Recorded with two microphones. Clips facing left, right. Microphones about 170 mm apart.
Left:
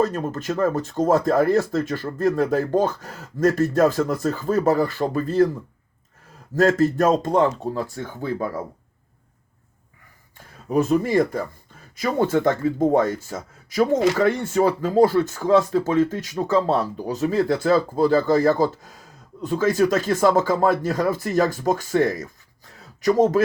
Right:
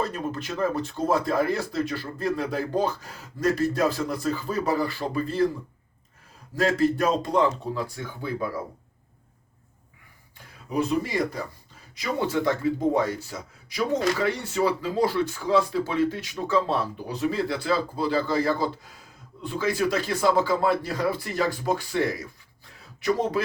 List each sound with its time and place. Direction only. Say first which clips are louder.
0.0 s speech: left 6 dB; 45° left (ahead or behind)
6.6 s speech: left 5 dB; 45° left (ahead or behind)
10.7 s speech: left 6 dB; 45° left (ahead or behind)